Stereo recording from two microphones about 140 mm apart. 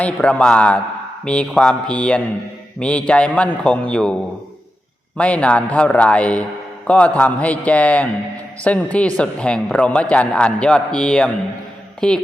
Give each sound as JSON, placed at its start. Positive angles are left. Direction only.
{"t": 0.0, "sound": "speech", "side_deg": 10}
{"t": 5.1, "sound": "speech", "side_deg": 10}